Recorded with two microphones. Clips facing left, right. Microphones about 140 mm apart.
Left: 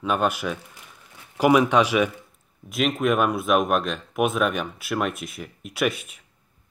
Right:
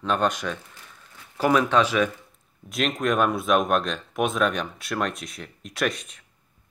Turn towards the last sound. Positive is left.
turn(degrees=5)  # may be behind; listen again after turning